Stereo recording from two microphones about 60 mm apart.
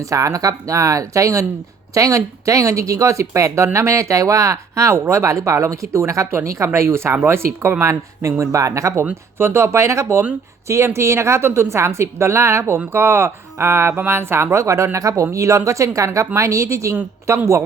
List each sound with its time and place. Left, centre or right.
0.1 s speech: right
6.7 s a woman's voice: right
8.3 s speech: right
9.4 s a woman's voice: right